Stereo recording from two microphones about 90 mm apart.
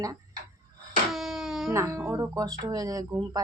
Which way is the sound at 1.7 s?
35° right (ahead or behind).